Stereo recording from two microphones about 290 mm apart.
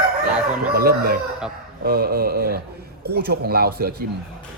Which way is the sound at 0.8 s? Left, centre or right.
Right.